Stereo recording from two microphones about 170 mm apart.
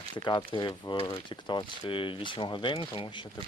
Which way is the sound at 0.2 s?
25° left (ahead or behind).